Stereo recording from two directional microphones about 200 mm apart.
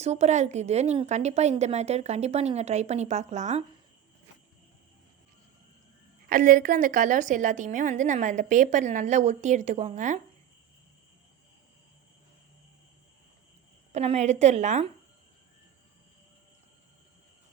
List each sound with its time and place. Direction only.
0.0 s a woman's voice: 35° right (ahead or behind)
6.2 s a woman's voice: 45° right (ahead or behind)
13.9 s a woman's voice: 35° right (ahead or behind)